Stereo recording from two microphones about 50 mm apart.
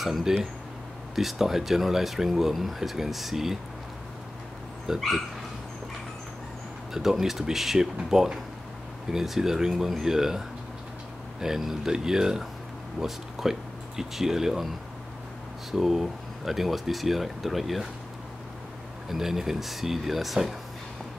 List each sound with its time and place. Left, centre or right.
0.0 s speech: centre
4.9 s speech: centre
6.9 s speech: centre
15.7 s speech: centre
19.0 s speech: centre